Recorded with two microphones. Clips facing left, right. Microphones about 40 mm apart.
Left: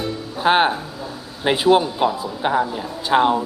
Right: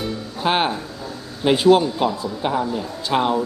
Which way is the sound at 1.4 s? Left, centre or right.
Centre.